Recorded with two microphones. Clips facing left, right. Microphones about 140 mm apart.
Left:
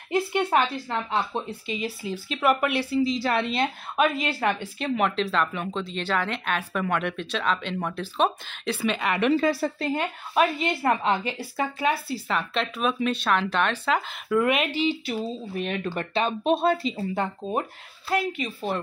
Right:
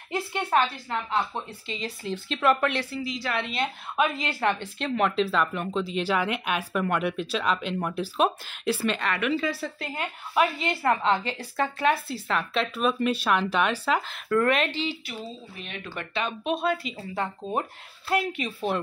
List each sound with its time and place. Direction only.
0.1 s speech: 15° left (ahead or behind)
3.0 s speech: 30° left (ahead or behind)
3.9 s a woman's voice: 15° left (ahead or behind)
9.3 s speech: 40° left (ahead or behind)
9.8 s a woman's voice: 25° left (ahead or behind); by 13.9 s 5° right (ahead or behind)
13.9 s speech: 10° left (ahead or behind)
15.7 s speech: 40° left (ahead or behind); by 17.3 s 25° left (ahead or behind)
18.1 s a woman's voice: centre (ahead or behind)